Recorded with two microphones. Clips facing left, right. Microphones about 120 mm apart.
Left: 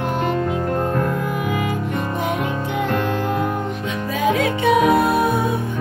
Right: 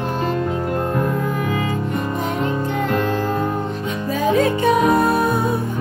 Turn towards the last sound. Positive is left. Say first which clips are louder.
# even
turn(degrees=10)  # may be behind; listen again after turning